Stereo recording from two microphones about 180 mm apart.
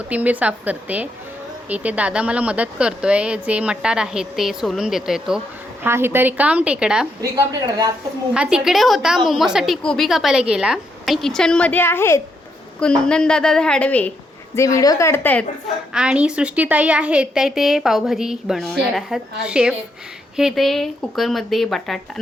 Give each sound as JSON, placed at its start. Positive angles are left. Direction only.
{"t": 0.1, "sound": "a woman's voice", "side_deg": -10}
{"t": 5.8, "sound": "a woman's voice", "side_deg": -15}
{"t": 7.2, "sound": "a woman's voice", "side_deg": -20}
{"t": 8.3, "sound": "a woman's voice", "side_deg": -5}
{"t": 15.9, "sound": "a woman's voice", "side_deg": -5}